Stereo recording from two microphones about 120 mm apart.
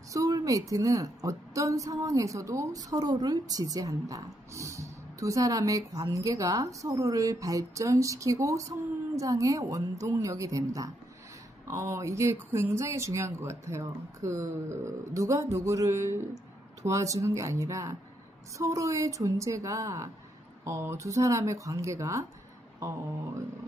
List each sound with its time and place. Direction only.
0.1 s a woman's voice: 30° right (ahead or behind)